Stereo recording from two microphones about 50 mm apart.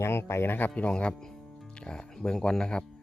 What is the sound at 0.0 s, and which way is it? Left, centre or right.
Speech, left.